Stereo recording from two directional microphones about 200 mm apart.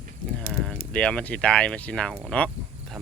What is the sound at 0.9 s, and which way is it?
Speech, 5° left (ahead or behind).